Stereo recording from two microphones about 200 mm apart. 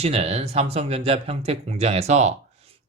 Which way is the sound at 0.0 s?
30° right (ahead or behind).